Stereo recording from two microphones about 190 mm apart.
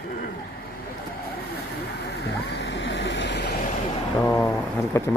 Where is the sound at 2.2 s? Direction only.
65° left (ahead or behind).